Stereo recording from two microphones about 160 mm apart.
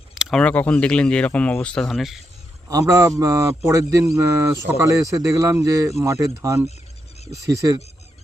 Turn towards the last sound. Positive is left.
turn(degrees=-20)  # may be behind; listen again after turning